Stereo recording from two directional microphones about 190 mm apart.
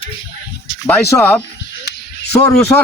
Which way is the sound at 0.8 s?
10° left (ahead or behind).